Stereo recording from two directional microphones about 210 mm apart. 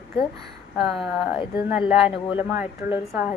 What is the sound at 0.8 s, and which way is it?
Speech, centre (ahead or behind).